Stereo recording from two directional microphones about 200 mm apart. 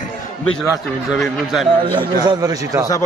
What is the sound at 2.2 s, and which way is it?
Speech, 20° right (ahead or behind).